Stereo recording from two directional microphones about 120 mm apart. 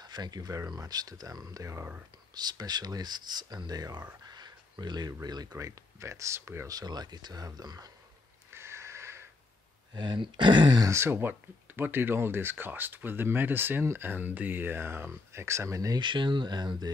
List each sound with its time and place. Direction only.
0.0 s speech: 35° right (ahead or behind)
6.8 s speech: 35° right (ahead or behind)
8.5 s a sound: 20° right (ahead or behind)
9.9 s speech: 40° right (ahead or behind)
10.9 s speech: 20° right (ahead or behind)
16.0 s speech: 40° right (ahead or behind)